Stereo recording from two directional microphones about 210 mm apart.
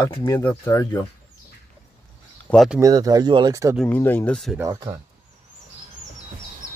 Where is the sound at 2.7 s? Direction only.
20° right (ahead or behind).